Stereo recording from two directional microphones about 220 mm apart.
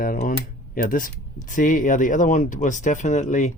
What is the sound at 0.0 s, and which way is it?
Speech, 40° left (ahead or behind).